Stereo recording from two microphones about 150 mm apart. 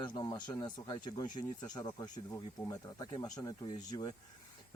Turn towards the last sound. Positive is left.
turn(degrees=25)  # may be behind; listen again after turning